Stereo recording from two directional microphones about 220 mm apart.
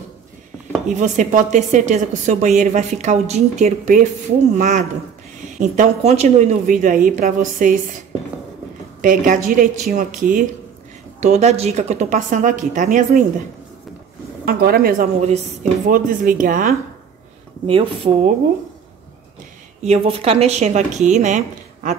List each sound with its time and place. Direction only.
0.8 s a woman's voice: 35° right (ahead or behind)
9.0 s a woman's voice: 35° right (ahead or behind)
14.4 s a woman's voice: 45° right (ahead or behind)
17.6 s speech: 25° right (ahead or behind)
19.8 s a woman's voice: 30° right (ahead or behind)